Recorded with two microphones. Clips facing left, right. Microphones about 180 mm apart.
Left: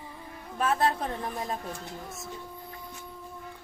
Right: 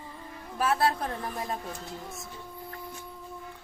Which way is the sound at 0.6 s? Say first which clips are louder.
Even; 5° right (ahead or behind).